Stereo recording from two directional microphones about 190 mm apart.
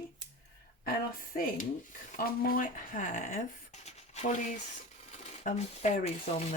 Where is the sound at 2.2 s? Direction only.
50° left (ahead or behind).